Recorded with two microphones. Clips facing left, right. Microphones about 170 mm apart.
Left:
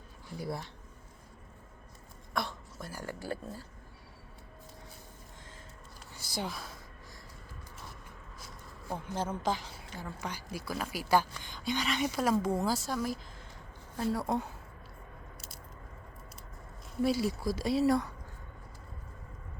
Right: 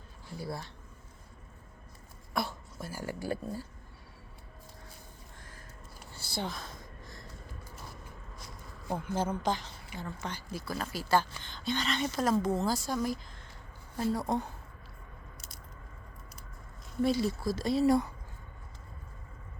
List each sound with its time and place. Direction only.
0.3 s speech: 20° left (ahead or behind)
2.3 s speech: 5° right (ahead or behind)
6.1 s a sound: 10° left (ahead or behind)
9.0 s a woman's voice: centre (ahead or behind)
17.0 s a woman's voice: 5° left (ahead or behind)